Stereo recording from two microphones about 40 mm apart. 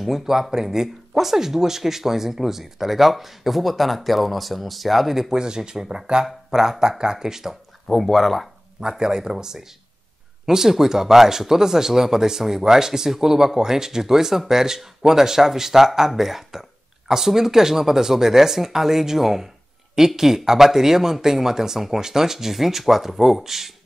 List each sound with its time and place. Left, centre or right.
0.0 s speech: centre
5.3 s speech: centre
7.9 s speech: centre
8.8 s speech: centre